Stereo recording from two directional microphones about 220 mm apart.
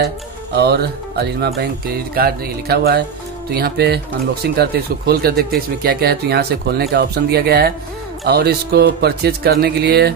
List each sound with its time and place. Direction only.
0.6 s speech: 45° right (ahead or behind)